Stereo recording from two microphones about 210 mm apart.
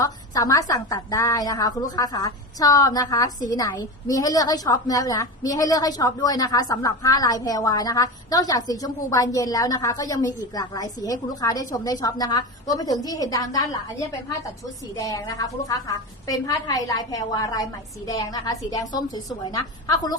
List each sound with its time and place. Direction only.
0.0 s a woman's voice: 15° left (ahead or behind)
14.9 s a woman's voice: 15° left (ahead or behind)